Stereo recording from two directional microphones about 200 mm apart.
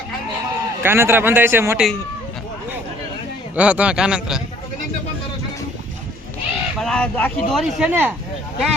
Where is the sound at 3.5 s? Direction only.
5° right (ahead or behind).